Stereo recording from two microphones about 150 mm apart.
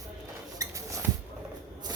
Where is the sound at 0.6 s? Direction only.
20° right (ahead or behind).